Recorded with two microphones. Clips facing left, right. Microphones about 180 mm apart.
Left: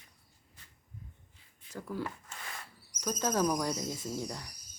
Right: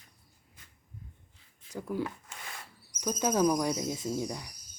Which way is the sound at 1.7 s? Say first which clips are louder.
Right 4 dB; 15° right (ahead or behind).